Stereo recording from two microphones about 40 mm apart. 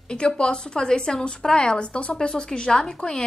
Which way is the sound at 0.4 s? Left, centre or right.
Centre.